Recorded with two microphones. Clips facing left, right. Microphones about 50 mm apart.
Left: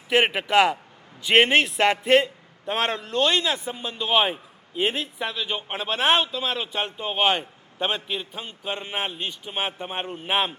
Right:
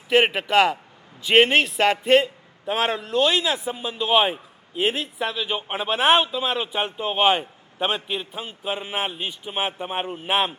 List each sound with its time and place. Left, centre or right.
0.1 s a man's voice: centre